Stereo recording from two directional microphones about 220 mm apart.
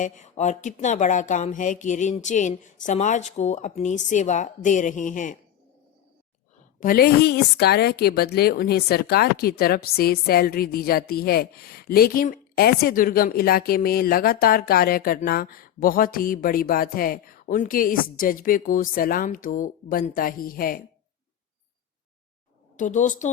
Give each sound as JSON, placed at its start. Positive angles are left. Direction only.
{"t": 0.0, "sound": "a woman's voice", "side_deg": 30}
{"t": 6.7, "sound": "a woman's voice", "side_deg": 40}
{"t": 22.8, "sound": "a woman's voice", "side_deg": 35}